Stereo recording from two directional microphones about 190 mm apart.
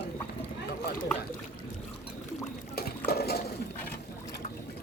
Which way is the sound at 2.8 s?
55° left (ahead or behind).